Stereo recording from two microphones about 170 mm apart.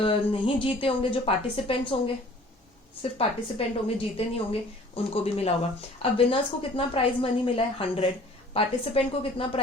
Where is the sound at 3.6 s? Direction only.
35° left (ahead or behind).